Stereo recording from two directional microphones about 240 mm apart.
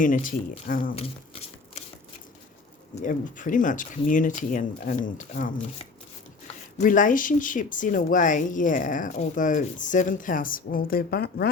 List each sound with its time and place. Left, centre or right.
0.0 s speech: left
2.9 s speech: left